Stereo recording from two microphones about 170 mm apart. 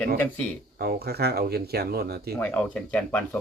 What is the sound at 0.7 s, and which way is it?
Speech, 70° right (ahead or behind).